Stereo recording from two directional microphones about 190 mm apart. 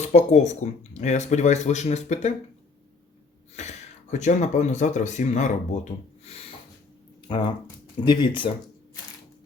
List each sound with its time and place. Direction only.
0.0 s speech: 35° left (ahead or behind)
3.5 s speech: 35° left (ahead or behind)